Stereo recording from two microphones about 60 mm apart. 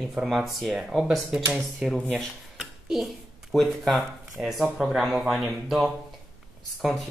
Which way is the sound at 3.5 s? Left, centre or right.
Centre.